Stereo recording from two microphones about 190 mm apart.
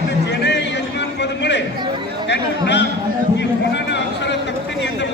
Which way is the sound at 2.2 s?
65° left (ahead or behind).